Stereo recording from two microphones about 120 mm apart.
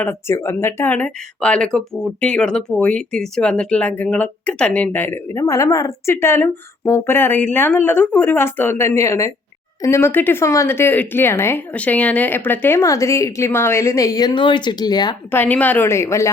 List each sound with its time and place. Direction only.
0.0 s speech: 20° left (ahead or behind); by 15.1 s 35° left (ahead or behind)
15.3 s speech: 15° left (ahead or behind)